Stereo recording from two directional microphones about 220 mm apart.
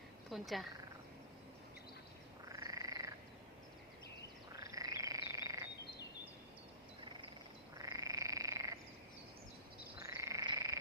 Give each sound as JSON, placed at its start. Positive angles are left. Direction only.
{"t": 0.3, "sound": "speech", "side_deg": 0}
{"t": 2.5, "sound": "frog", "side_deg": -15}
{"t": 4.5, "sound": "frog", "side_deg": -15}
{"t": 7.8, "sound": "frog", "side_deg": -15}
{"t": 10.2, "sound": "frog", "side_deg": -15}